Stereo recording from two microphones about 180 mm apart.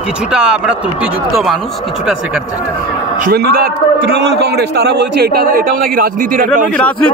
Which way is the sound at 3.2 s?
60° right (ahead or behind).